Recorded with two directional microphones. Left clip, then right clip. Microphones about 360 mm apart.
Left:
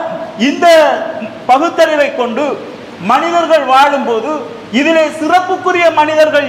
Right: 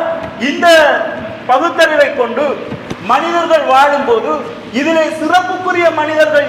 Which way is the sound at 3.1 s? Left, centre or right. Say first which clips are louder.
Left 1 dB; left.